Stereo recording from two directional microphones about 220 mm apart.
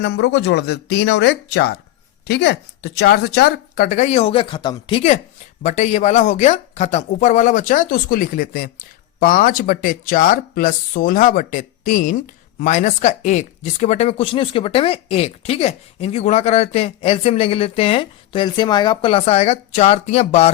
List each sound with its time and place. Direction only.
0.0 s speech: 50° left (ahead or behind); by 20.5 s 30° left (ahead or behind)